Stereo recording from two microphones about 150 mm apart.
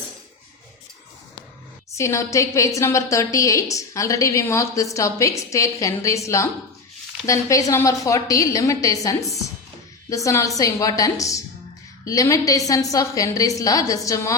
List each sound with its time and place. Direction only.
1.9 s a woman's voice: 20° left (ahead or behind)